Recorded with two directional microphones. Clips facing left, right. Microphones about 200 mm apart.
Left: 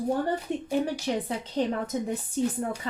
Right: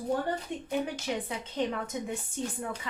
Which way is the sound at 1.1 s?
35° left (ahead or behind).